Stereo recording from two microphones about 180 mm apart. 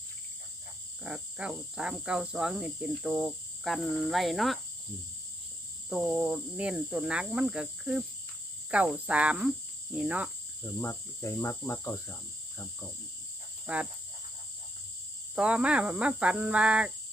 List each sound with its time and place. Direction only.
1.0 s cricket: 5° right (ahead or behind)
5.9 s cricket: 5° right (ahead or behind)
10.8 s speech: 15° left (ahead or behind)
13.7 s speech: 5° right (ahead or behind)
15.4 s speech: 5° right (ahead or behind)